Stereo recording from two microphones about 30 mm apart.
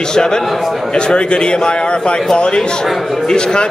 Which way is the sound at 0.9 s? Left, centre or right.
Left.